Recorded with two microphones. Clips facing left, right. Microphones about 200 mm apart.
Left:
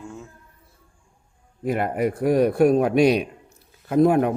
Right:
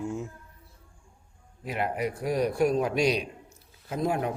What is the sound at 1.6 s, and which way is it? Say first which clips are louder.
A man's voice: left 7 dB; 50° left (ahead or behind).